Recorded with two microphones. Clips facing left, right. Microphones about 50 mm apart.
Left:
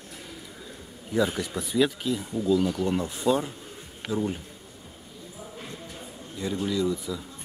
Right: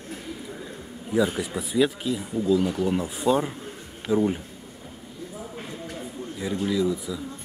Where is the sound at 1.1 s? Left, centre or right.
Centre.